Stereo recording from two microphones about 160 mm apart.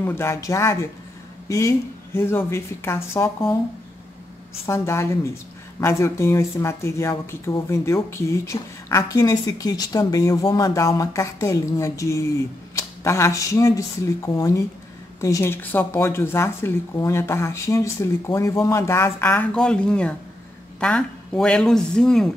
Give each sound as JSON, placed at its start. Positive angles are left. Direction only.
{"t": 0.0, "sound": "speech", "side_deg": 15}
{"t": 4.6, "sound": "speech", "side_deg": 15}